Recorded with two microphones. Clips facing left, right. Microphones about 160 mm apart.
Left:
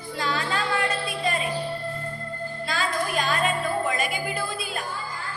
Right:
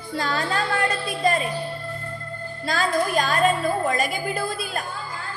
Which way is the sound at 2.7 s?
40° right (ahead or behind).